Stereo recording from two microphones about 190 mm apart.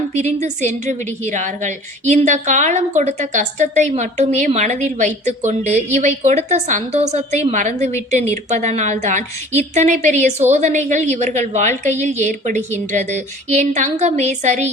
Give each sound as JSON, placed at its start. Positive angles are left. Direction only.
{"t": 0.1, "sound": "a woman's voice", "side_deg": -35}